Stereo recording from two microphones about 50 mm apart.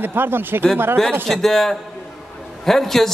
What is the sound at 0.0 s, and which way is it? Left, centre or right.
Speech, right.